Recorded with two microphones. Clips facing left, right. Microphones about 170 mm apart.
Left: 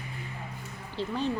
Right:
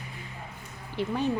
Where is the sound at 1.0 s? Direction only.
15° right (ahead or behind).